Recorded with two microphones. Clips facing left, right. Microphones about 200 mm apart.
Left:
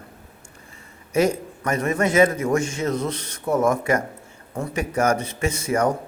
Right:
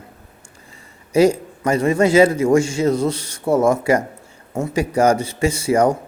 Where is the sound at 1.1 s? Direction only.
30° right (ahead or behind).